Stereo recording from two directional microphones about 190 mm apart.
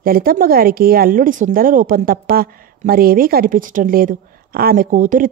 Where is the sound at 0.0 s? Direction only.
50° right (ahead or behind).